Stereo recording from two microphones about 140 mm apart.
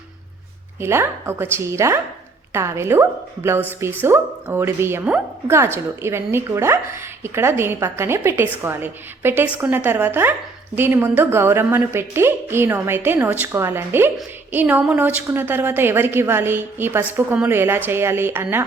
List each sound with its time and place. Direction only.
0.8 s a woman's voice: 20° right (ahead or behind)